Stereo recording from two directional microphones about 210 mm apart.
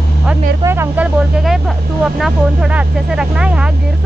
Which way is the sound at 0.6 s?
10° right (ahead or behind).